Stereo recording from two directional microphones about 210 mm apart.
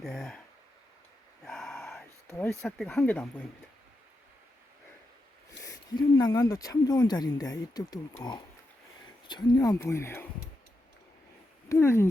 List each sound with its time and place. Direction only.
0.0 s speech: 5° left (ahead or behind)
1.5 s a sound: centre (ahead or behind)
2.5 s speech: 5° left (ahead or behind)
5.6 s speech: 15° left (ahead or behind)
11.7 s speech: 10° left (ahead or behind)